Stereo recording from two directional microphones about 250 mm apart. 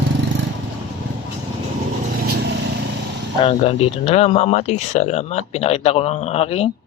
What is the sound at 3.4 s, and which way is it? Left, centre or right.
Speech, left.